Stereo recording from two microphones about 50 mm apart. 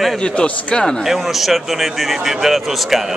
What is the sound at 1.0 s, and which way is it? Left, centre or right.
A man's voice, centre.